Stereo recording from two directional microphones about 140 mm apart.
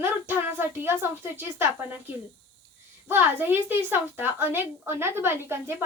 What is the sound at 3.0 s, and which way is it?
A woman's voice, 15° right (ahead or behind).